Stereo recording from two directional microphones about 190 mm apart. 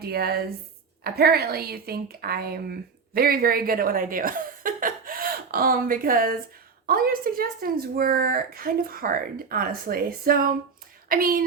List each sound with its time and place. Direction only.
0.0 s a woman's voice: 55° right (ahead or behind)